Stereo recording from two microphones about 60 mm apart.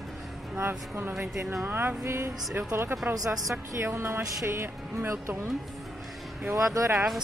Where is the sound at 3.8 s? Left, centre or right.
Right.